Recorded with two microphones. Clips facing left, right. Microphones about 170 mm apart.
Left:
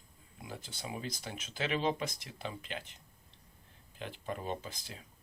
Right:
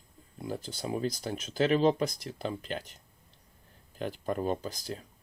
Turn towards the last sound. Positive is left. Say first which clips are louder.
# right 8 dB
turn(degrees=-40)  # may be behind; listen again after turning